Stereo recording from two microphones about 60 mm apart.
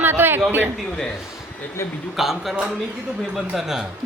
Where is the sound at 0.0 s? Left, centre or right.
Right.